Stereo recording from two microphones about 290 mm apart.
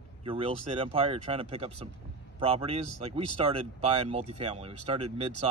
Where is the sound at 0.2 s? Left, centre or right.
Centre.